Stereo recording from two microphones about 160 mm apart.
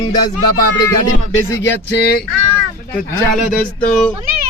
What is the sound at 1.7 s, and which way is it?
Speech, 90° left.